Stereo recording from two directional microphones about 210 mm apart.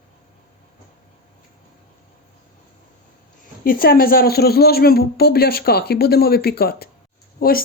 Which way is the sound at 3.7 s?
45° left (ahead or behind).